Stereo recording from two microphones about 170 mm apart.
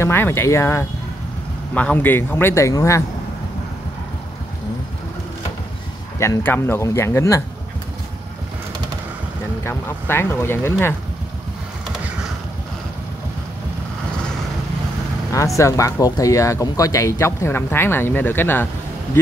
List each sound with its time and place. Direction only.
0.0 s speech: 15° left (ahead or behind)
6.1 s speech: 15° left (ahead or behind)
9.6 s speech: 15° left (ahead or behind)
15.3 s speech: 20° left (ahead or behind)